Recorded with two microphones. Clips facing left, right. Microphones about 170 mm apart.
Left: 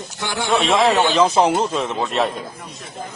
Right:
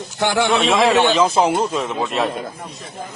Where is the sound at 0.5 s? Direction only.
Centre (ahead or behind).